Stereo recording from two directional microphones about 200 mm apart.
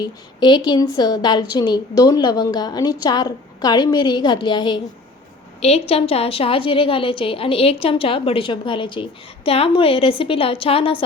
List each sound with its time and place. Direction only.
0.0 s a woman's voice: 20° left (ahead or behind)